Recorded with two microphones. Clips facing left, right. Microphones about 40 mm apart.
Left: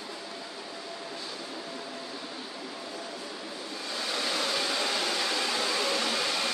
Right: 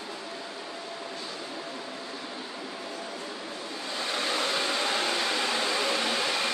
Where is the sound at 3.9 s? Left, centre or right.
Centre.